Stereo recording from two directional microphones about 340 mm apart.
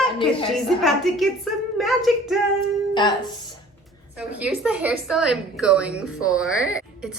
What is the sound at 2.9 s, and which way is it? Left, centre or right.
Speech, centre.